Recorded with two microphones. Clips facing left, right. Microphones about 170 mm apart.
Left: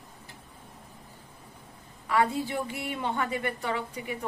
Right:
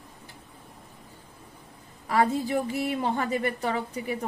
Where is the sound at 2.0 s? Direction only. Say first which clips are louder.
Right 2 dB; 40° right (ahead or behind).